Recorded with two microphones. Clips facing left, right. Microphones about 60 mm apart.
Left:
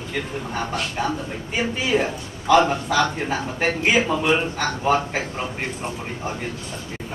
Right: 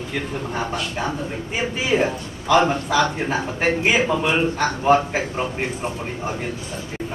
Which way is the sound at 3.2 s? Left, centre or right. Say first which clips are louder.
Right 2 dB; right.